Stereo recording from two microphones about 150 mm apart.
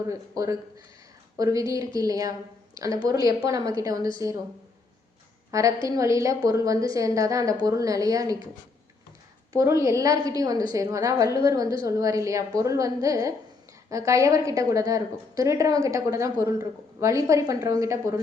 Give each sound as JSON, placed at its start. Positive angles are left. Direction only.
{"t": 0.1, "sound": "a woman's voice", "side_deg": -20}
{"t": 5.5, "sound": "a woman's voice", "side_deg": -20}
{"t": 9.5, "sound": "a woman's voice", "side_deg": -20}